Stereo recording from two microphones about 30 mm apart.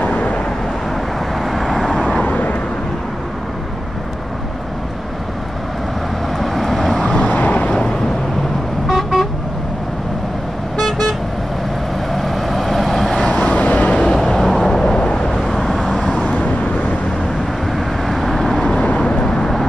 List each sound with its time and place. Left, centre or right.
0.1 s vehicle: left
1.4 s vehicle: centre
2.2 s vehicle: left
6.4 s vehicle: centre
7.0 s vehicle: left
7.4 s vehicle: left
8.8 s vehicle: centre
10.9 s vehicle: centre
13.3 s vehicle: left
14.1 s vehicle: centre
14.4 s vehicle: centre
15.0 s vehicle: left
15.8 s vehicle: centre
17.7 s vehicle: centre